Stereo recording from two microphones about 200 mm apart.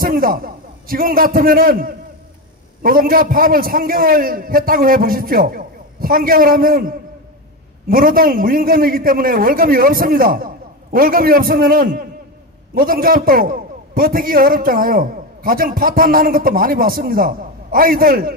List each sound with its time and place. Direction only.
0.0 s a man's voice: 45° right (ahead or behind)